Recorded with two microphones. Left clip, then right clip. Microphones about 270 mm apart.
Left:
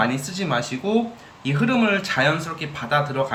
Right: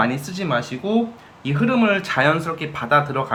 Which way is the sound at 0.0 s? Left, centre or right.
Centre.